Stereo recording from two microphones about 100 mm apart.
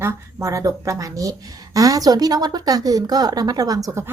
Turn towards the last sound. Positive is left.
turn(degrees=-25)  # may be behind; listen again after turning